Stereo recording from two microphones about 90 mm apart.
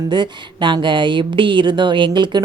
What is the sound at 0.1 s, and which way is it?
A woman's voice, 60° right (ahead or behind).